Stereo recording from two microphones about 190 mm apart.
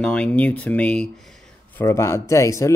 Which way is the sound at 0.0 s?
5° left (ahead or behind).